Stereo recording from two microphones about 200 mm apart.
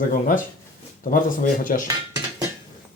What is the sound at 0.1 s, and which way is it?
Speech, 40° left (ahead or behind).